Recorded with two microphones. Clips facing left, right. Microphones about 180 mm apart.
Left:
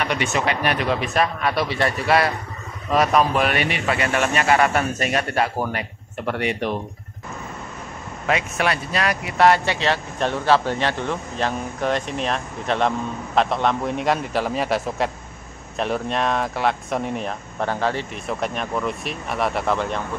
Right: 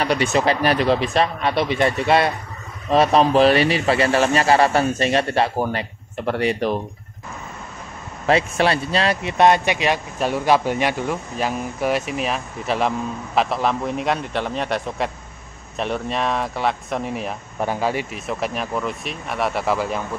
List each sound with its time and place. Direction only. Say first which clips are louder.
0.0 s speech: right 4 dB; 35° right (ahead or behind)
8.3 s speech: right 4 dB; 30° right (ahead or behind); by 20.0 s 5° right (ahead or behind)